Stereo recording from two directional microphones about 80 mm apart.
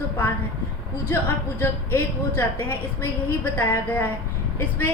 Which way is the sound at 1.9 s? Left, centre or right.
Left.